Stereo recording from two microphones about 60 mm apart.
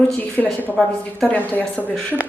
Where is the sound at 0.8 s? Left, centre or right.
Centre.